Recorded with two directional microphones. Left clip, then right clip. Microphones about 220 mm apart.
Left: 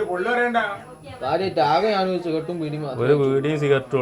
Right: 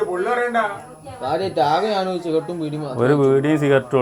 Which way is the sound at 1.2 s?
15° right (ahead or behind).